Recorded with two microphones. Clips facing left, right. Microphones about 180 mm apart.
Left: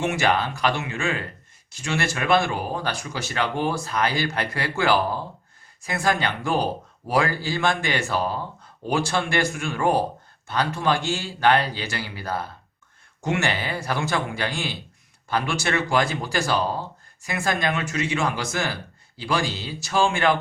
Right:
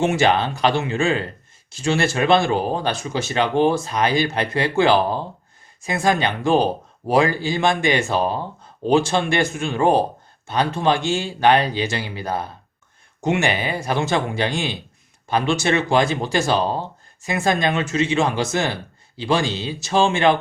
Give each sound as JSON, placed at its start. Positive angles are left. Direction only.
{"t": 0.0, "sound": "speech", "side_deg": -25}